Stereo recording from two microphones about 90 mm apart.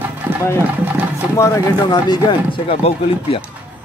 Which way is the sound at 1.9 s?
55° left (ahead or behind).